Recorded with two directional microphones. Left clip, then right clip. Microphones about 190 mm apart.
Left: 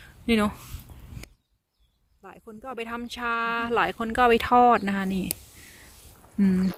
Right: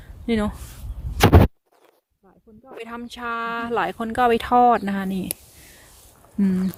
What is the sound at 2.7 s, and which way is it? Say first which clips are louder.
Speech: even; centre (ahead or behind).